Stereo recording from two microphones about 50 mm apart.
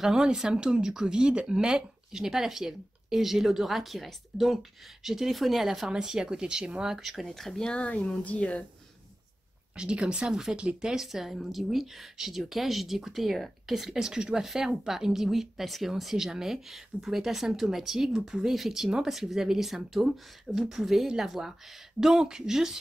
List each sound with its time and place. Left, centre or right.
0.0 s speech: centre
6.9 s speech: centre; by 8.6 s left
9.8 s speech: centre
10.8 s speech: centre